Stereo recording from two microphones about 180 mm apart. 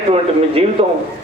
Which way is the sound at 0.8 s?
30° right (ahead or behind).